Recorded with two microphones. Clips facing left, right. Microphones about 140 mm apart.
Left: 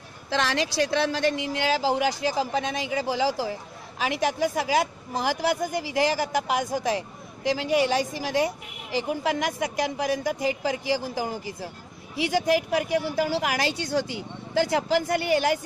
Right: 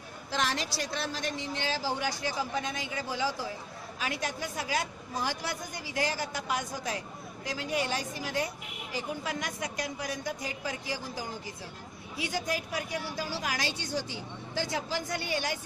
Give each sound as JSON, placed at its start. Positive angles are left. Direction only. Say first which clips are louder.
{"t": 0.3, "sound": "a woman's voice", "louder": "left 6 dB", "side_deg": 90}
{"t": 14.6, "sound": "speech", "louder": "left 10 dB", "side_deg": 80}